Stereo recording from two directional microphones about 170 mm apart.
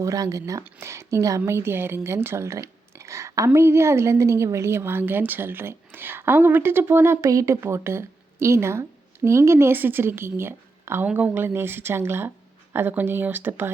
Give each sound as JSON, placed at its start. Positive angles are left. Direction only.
{"t": 0.0, "sound": "speech", "side_deg": -20}